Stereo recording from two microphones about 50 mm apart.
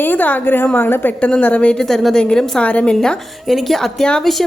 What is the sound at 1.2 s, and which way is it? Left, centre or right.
Speech, left.